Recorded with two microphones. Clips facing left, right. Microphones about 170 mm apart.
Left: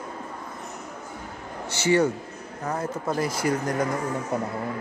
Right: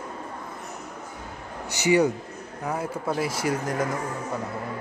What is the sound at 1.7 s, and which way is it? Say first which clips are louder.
A man's voice: right 1 dB; 15° right (ahead or behind).